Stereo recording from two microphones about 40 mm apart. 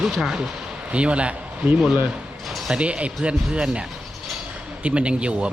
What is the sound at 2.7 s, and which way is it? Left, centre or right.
Speech, right.